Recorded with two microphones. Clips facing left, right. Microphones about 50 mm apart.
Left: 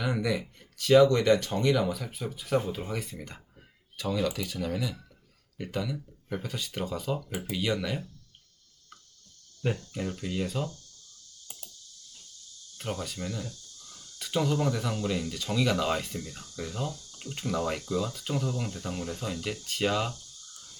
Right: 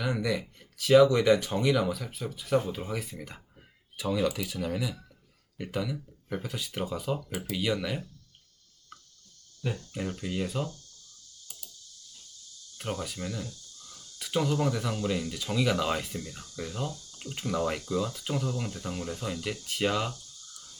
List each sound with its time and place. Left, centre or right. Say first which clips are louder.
0.0 s speech: even; centre
9.6 s speech: left 4 dB; left
9.9 s speech: even; centre
12.7 s speech: even; centre
13.8 s cricket: even; centre
14.6 s speech: even; centre